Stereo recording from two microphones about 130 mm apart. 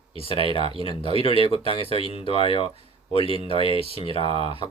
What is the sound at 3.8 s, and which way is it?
Speech, 45° right (ahead or behind).